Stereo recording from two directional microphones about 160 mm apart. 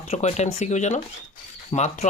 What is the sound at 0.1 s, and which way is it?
Speech, 45° left (ahead or behind).